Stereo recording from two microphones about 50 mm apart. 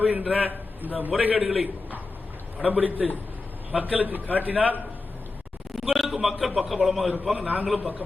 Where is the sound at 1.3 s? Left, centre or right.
Centre.